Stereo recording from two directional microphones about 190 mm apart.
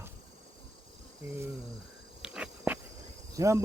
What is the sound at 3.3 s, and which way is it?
Speech, 15° right (ahead or behind).